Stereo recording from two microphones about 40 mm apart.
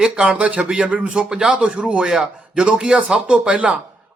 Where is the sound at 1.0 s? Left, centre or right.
Centre.